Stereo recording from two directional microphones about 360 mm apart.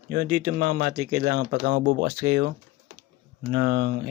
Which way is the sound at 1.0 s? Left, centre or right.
Centre.